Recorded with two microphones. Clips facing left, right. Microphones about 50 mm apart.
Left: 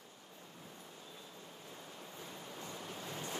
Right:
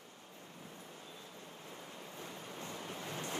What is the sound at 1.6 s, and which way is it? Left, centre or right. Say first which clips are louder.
Waves: right 2 dB; right.